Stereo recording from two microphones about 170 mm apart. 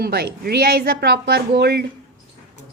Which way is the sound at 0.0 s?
70° right (ahead or behind).